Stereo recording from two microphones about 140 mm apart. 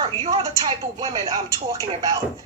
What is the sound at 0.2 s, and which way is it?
Speech, 25° right (ahead or behind).